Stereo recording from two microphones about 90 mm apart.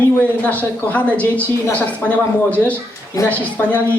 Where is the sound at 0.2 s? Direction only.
15° left (ahead or behind).